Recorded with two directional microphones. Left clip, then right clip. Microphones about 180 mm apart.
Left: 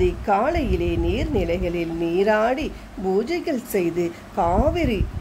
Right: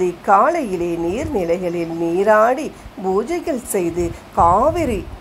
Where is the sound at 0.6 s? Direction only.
40° right (ahead or behind).